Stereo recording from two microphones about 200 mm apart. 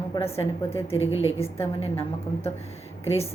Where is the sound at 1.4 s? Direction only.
10° left (ahead or behind).